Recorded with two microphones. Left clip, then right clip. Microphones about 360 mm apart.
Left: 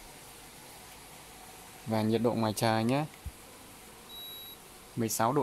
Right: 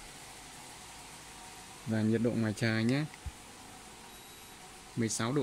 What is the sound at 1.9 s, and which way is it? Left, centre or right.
Speech, left.